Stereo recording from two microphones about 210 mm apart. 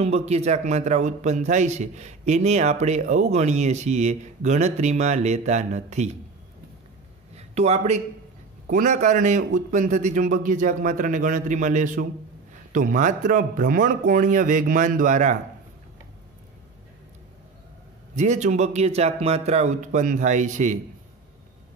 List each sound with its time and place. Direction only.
0.0 s a man's voice: 30° right (ahead or behind)
7.3 s a man's voice: 30° right (ahead or behind)
18.1 s a man's voice: 35° right (ahead or behind)